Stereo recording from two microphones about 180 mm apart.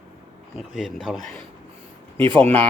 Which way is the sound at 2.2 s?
25° right (ahead or behind).